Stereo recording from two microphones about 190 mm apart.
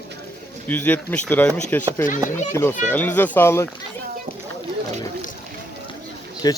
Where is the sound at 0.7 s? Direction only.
10° left (ahead or behind).